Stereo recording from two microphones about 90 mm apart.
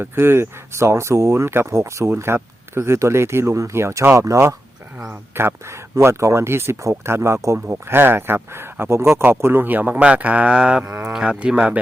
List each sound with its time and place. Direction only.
0.0 s speech: 25° right (ahead or behind)